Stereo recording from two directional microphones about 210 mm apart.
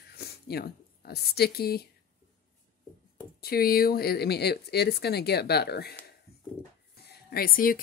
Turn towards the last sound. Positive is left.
turn(degrees=45)  # may be behind; listen again after turning